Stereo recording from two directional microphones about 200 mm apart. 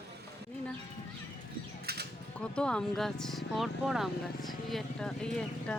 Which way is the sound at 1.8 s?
55° right (ahead or behind).